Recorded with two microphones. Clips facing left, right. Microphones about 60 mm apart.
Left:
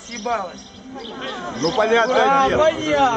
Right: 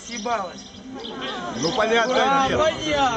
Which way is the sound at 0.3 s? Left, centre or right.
Centre.